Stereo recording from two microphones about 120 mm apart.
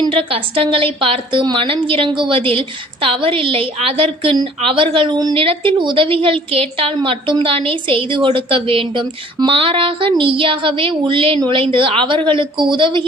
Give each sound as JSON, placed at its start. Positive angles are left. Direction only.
{"t": 0.1, "sound": "a woman's voice", "side_deg": -50}